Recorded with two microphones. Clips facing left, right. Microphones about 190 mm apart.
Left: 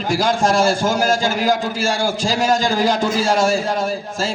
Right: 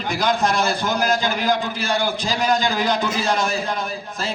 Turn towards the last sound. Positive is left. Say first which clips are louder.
# left 6 dB
turn(degrees=45)  # may be behind; listen again after turning